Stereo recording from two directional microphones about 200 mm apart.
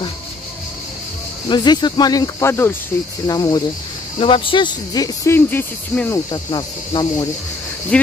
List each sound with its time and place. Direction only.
1.5 s speech: 20° left (ahead or behind)
7.9 s speech: 5° left (ahead or behind)